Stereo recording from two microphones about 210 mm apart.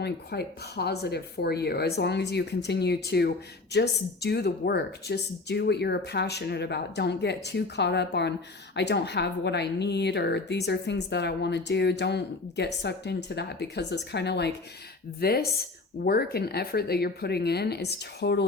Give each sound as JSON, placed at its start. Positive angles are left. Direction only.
{"t": 0.0, "sound": "speech", "side_deg": 50}